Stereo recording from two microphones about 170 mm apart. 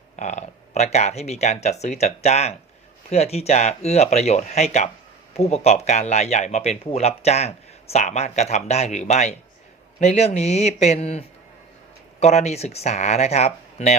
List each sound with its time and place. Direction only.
0.2 s speech: 45° left (ahead or behind)